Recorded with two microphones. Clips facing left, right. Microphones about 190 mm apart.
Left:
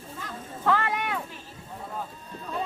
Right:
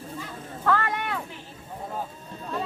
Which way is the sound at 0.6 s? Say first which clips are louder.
Even; 10° left (ahead or behind).